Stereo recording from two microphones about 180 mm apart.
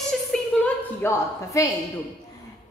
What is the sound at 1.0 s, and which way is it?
Speech, 15° left (ahead or behind).